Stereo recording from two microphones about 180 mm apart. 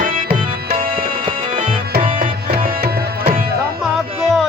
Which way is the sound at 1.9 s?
50° right (ahead or behind).